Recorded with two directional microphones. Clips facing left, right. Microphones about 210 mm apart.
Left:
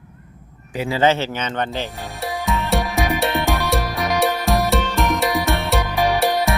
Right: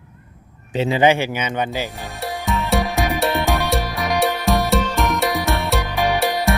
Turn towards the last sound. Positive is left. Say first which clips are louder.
# left 1 dB
turn(degrees=0)  # may be behind; listen again after turning